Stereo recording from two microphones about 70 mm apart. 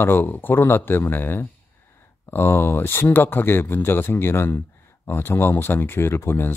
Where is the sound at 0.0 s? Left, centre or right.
Left.